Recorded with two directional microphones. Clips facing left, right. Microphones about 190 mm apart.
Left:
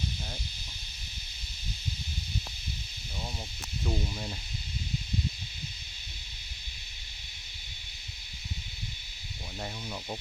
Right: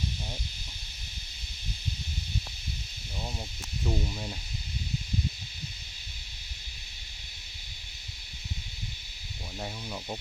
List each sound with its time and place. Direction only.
3.8 s speech: 5° right (ahead or behind)
9.6 s speech: 5° right (ahead or behind)